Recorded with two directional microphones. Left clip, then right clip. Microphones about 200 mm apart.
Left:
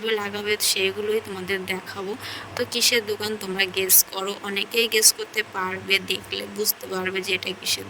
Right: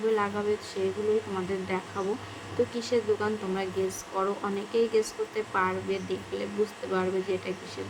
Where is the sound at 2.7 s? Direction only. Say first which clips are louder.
Left 9 dB; 55° left (ahead or behind).